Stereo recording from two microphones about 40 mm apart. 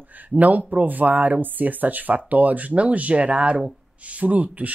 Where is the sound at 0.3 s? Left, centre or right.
Right.